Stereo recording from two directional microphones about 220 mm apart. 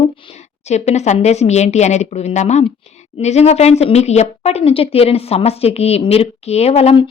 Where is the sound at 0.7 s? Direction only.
30° left (ahead or behind).